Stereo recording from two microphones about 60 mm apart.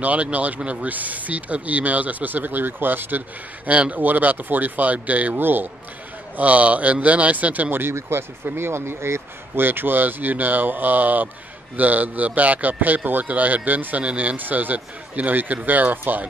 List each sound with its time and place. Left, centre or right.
0.0 s speech: right
7.8 s speech: right